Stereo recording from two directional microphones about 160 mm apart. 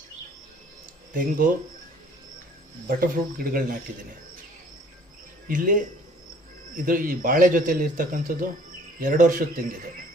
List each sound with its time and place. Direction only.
1.1 s a man's voice: 55° right (ahead or behind)
3.0 s a man's voice: 65° right (ahead or behind)
5.5 s a man's voice: 55° right (ahead or behind)